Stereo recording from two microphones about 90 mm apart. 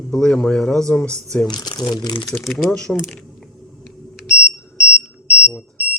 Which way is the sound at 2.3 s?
Centre (ahead or behind).